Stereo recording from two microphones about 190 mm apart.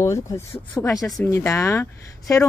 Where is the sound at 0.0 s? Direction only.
15° left (ahead or behind).